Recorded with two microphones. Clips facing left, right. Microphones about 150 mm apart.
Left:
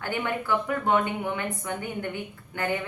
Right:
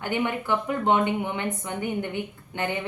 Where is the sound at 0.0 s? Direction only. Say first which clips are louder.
Right 2 dB; 20° right (ahead or behind).